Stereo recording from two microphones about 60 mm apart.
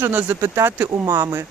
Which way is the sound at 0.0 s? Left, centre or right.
Right.